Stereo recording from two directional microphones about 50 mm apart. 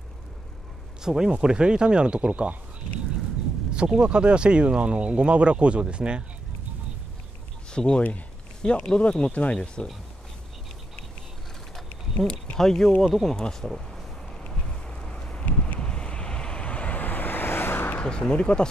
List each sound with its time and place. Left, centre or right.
1.0 s speech: centre
3.7 s speech: right
7.7 s speech: centre
11.7 s a sound: centre
13.0 s speech: centre
14.4 s a sound: centre
15.4 s wind: left
18.0 s speech: centre